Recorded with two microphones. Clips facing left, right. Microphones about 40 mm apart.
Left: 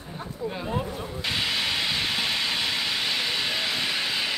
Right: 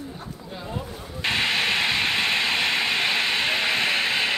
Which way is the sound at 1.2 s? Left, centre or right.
Right.